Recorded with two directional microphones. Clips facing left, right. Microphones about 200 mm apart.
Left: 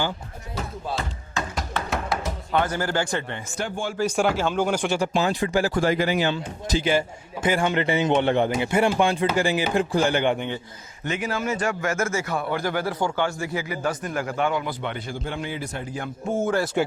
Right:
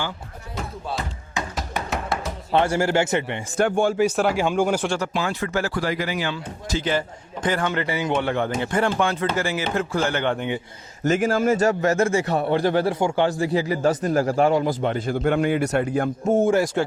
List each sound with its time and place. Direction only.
2.1 s music: centre (ahead or behind)
2.5 s speech: 30° right (ahead or behind)
3.6 s a man's voice: 60° right (ahead or behind)
4.0 s speech: 5° right (ahead or behind)
5.0 s speech: 20° left (ahead or behind)
5.8 s speech: 25° left (ahead or behind)
11.0 s a man's voice: 45° right (ahead or behind)
15.1 s a man's voice: 60° right (ahead or behind)
16.4 s speech: 15° right (ahead or behind)